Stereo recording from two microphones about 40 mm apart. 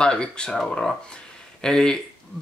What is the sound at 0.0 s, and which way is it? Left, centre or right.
Speech, left.